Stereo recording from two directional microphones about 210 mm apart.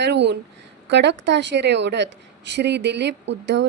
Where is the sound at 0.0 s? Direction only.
55° right (ahead or behind).